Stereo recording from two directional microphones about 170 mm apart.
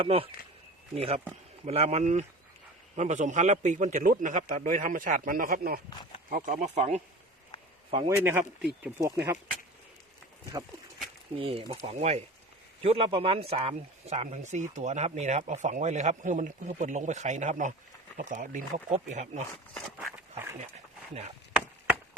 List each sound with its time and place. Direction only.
0.0 s speech: 35° right (ahead or behind); by 5.8 s 60° right (ahead or behind)
6.3 s speech: 50° right (ahead or behind)
7.9 s a man's voice: 30° right (ahead or behind)
8.2 s speech: 10° right (ahead or behind)
11.3 s speech: 35° right (ahead or behind)
19.7 s a sound: 5° left (ahead or behind)